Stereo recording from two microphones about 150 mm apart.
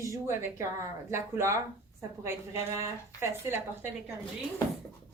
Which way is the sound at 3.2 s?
15° right (ahead or behind).